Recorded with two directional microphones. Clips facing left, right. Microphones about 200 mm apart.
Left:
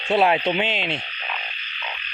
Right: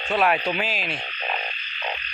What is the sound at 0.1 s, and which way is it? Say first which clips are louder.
Speech: left 3 dB; 25° left (ahead or behind).